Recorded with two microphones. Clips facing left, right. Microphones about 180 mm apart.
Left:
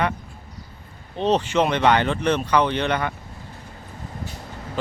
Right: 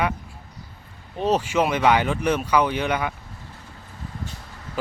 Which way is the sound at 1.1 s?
10° right (ahead or behind).